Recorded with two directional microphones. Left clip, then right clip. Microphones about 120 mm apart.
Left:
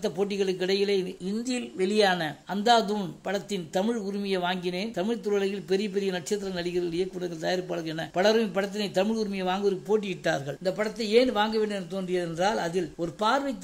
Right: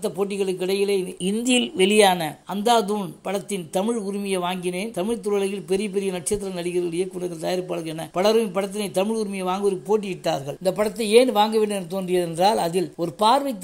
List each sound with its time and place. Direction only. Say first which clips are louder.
0.0 s speech: right 3 dB; 5° right (ahead or behind)
1.9 s speech: right 5 dB; 25° right (ahead or behind); by 10.4 s 5° right (ahead or behind)
10.6 s speech: right 6 dB; 30° right (ahead or behind)